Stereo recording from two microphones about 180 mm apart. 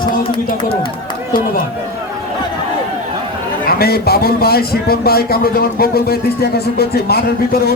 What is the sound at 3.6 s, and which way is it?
A man's voice, 60° left (ahead or behind).